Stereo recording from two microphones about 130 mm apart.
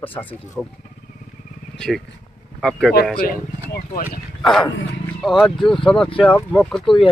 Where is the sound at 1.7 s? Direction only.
5° left (ahead or behind).